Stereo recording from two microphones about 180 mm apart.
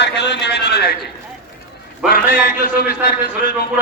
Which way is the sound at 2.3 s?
10° right (ahead or behind).